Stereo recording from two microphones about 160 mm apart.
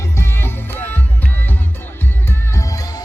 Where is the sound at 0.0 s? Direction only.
15° left (ahead or behind).